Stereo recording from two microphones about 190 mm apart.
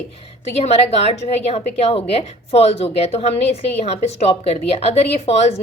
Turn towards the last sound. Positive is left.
turn(degrees=35)  # may be behind; listen again after turning